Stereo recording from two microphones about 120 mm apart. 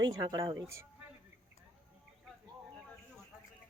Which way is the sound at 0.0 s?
35° right (ahead or behind).